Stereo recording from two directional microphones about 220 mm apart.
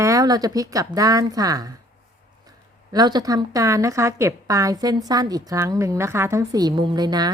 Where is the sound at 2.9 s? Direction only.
20° right (ahead or behind).